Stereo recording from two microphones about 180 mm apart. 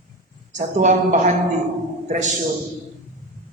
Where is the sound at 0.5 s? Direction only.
40° right (ahead or behind).